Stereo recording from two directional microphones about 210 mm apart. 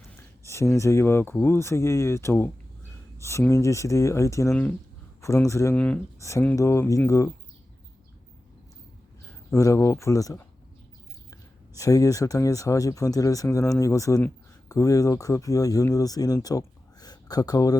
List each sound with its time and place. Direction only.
0.4 s speech: 15° left (ahead or behind)
9.5 s speech: 15° left (ahead or behind)
11.8 s speech: 15° left (ahead or behind)